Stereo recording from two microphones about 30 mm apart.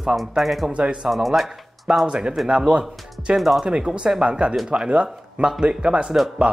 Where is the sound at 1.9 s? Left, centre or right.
Right.